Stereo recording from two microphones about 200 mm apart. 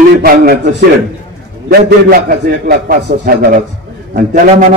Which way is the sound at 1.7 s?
50° right (ahead or behind).